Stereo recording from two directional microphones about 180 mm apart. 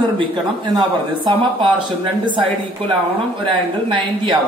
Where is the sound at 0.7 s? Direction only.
25° right (ahead or behind).